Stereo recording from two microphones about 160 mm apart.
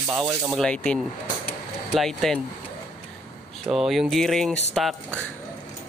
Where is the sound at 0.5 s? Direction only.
5° left (ahead or behind).